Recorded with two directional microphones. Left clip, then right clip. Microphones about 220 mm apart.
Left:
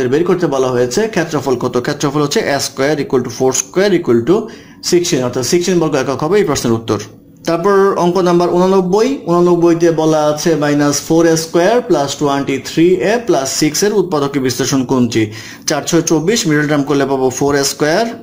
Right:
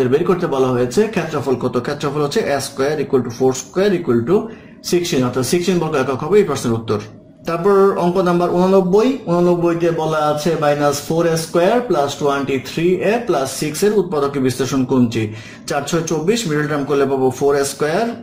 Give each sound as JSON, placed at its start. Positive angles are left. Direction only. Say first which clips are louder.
{"t": 0.1, "sound": "speech", "louder": "left 3 dB", "side_deg": 40}